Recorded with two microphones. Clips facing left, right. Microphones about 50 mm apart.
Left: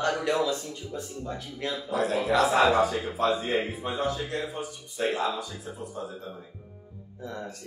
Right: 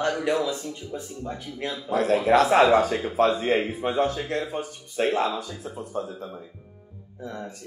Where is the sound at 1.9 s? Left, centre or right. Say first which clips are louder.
Right 6 dB; right.